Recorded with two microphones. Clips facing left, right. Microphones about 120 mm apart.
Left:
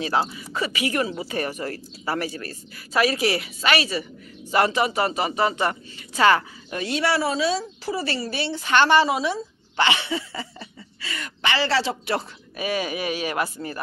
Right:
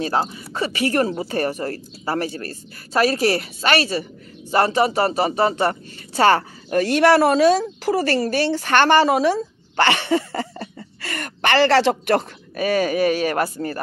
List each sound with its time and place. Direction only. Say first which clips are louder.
0.0 s speech: right 2 dB; 40° right (ahead or behind)
6.7 s a woman's voice: right 9 dB; 55° right (ahead or behind)
12.5 s a woman's voice: right 7 dB; 45° right (ahead or behind)